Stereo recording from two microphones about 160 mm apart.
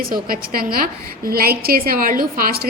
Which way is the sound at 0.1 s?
65° right (ahead or behind).